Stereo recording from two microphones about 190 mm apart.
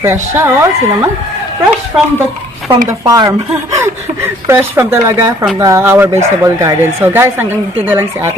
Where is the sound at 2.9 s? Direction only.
20° right (ahead or behind).